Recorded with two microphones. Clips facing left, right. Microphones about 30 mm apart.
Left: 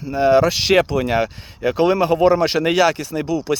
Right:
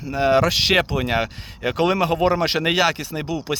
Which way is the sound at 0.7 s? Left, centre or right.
Right.